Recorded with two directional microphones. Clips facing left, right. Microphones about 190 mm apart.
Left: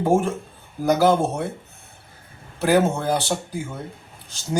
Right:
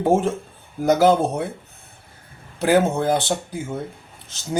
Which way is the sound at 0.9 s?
15° right (ahead or behind).